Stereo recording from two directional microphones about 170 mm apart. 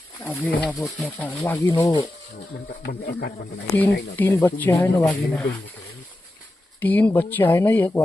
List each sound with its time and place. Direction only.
0.3 s speech: 5° left (ahead or behind)
2.8 s speech: 65° left (ahead or behind)
3.7 s speech: 15° left (ahead or behind)
6.8 s speech: 10° left (ahead or behind)